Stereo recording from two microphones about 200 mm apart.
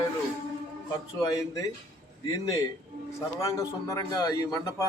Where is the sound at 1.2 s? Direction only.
20° left (ahead or behind).